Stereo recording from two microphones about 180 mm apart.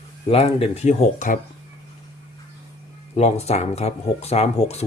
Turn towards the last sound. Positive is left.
turn(degrees=35)  # may be behind; listen again after turning